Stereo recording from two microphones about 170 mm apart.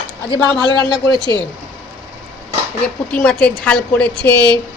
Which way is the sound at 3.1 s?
5° left (ahead or behind).